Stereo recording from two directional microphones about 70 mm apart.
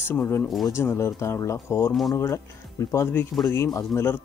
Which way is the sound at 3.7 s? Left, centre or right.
Left.